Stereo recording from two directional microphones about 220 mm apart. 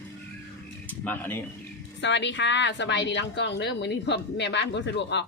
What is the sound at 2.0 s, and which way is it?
A woman's voice, 55° left (ahead or behind).